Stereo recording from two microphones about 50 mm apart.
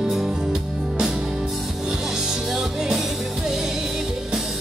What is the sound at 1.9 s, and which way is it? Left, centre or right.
Music, centre.